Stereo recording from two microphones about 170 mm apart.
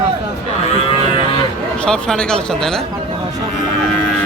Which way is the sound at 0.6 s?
35° left (ahead or behind).